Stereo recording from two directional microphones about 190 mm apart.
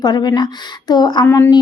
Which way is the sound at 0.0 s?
20° left (ahead or behind).